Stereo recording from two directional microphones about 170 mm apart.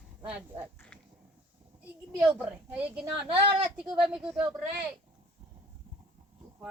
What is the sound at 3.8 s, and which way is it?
Speech, 5° right (ahead or behind).